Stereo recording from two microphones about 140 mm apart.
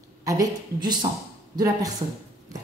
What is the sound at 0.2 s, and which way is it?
Speech, 25° right (ahead or behind).